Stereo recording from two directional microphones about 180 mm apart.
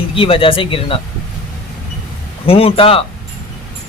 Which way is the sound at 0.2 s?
30° left (ahead or behind).